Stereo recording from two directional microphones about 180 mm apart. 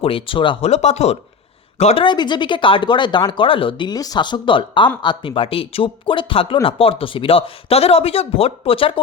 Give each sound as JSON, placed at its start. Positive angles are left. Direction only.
{"t": 0.0, "sound": "speech", "side_deg": 30}